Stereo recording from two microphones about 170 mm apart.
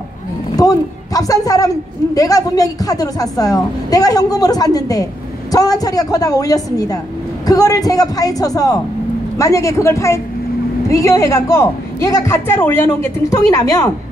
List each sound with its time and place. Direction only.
0.6 s a woman's voice: 20° left (ahead or behind)